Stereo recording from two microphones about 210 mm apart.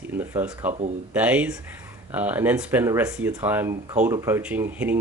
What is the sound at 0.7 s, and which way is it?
Speech, 35° right (ahead or behind).